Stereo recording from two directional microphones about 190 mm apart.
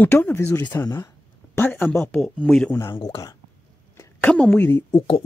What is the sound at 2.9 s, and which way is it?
Speech, 20° left (ahead or behind).